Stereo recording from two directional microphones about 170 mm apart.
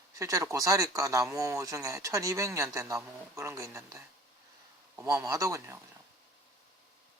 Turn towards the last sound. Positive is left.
turn(degrees=-15)  # may be behind; listen again after turning